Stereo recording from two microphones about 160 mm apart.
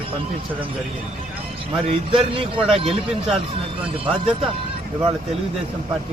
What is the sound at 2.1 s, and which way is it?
Speech, 35° right (ahead or behind).